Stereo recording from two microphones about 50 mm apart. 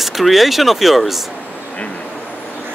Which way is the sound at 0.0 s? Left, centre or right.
Centre.